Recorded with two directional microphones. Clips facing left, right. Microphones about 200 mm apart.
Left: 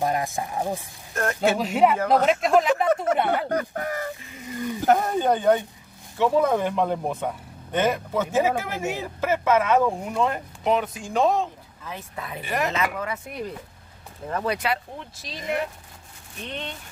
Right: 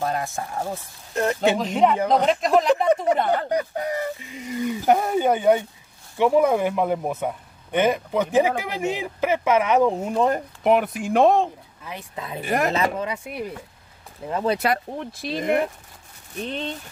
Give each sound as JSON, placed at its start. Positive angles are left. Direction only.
{"t": 0.0, "sound": "speech", "side_deg": 15}
{"t": 1.1, "sound": "speech", "side_deg": -15}
{"t": 1.6, "sound": "speech", "side_deg": 5}
{"t": 2.9, "sound": "a sound", "side_deg": -15}
{"t": 3.4, "sound": "speech", "side_deg": -15}
{"t": 10.1, "sound": "speech", "side_deg": -40}
{"t": 10.6, "sound": "speech", "side_deg": -60}
{"t": 11.8, "sound": "speech", "side_deg": -15}
{"t": 12.4, "sound": "a woman's voice", "side_deg": -50}
{"t": 12.7, "sound": "speech", "side_deg": -30}
{"t": 13.1, "sound": "speech", "side_deg": -10}
{"t": 14.3, "sound": "speech", "side_deg": -25}
{"t": 14.6, "sound": "speech", "side_deg": -50}
{"t": 16.3, "sound": "speech", "side_deg": -35}